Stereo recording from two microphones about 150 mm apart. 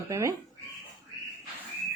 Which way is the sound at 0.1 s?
20° right (ahead or behind).